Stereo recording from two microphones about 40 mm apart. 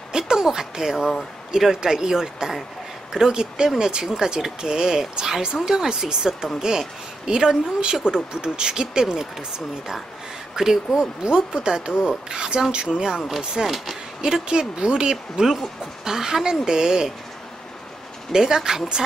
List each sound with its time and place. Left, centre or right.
0.1 s a sound: centre
1.7 s speech: centre
10.5 s speech: centre
18.3 s speech: centre